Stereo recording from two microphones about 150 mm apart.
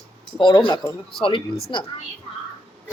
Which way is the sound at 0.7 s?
20° left (ahead or behind).